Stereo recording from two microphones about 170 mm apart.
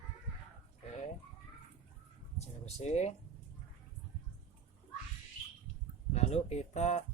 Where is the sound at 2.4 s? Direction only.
40° left (ahead or behind).